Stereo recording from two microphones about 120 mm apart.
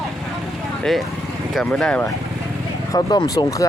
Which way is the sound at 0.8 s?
Centre (ahead or behind).